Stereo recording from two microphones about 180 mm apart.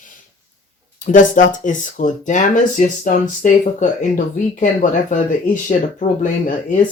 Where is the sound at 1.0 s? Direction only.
45° left (ahead or behind).